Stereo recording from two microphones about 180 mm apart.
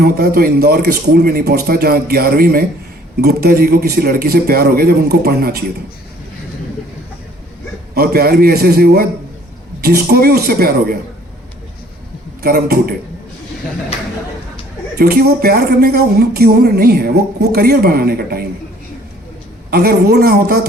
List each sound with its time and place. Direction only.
0.0 s a man's voice: 55° right (ahead or behind)
7.9 s a man's voice: 60° right (ahead or behind)
12.4 s a man's voice: 60° right (ahead or behind)
14.9 s a man's voice: 60° right (ahead or behind)
19.7 s a man's voice: 60° right (ahead or behind)